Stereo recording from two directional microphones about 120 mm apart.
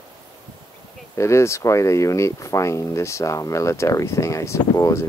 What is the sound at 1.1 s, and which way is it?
Speech, 25° left (ahead or behind).